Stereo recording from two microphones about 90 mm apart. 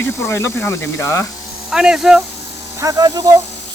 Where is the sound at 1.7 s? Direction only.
5° right (ahead or behind).